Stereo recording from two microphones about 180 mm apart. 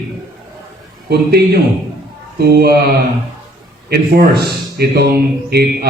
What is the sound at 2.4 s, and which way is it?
Speech, 60° right (ahead or behind).